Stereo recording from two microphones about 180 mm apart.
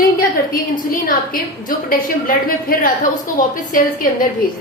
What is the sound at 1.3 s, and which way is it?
A woman's voice, 50° left (ahead or behind).